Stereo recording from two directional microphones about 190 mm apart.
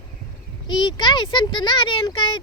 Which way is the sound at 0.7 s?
25° left (ahead or behind).